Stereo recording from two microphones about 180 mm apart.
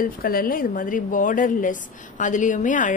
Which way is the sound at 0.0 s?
55° left (ahead or behind).